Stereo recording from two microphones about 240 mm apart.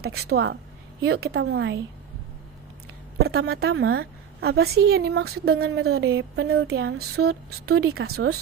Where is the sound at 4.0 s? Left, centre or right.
Right.